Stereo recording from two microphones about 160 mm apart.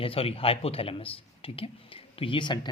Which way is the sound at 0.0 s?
35° left (ahead or behind).